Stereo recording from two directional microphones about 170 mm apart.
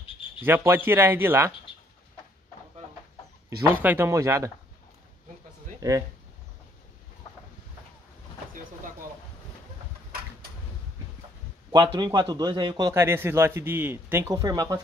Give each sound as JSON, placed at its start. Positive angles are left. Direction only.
{"t": 0.4, "sound": "speech", "side_deg": -10}
{"t": 3.4, "sound": "speech", "side_deg": -10}
{"t": 5.8, "sound": "speech", "side_deg": -20}
{"t": 11.7, "sound": "a man's voice", "side_deg": -25}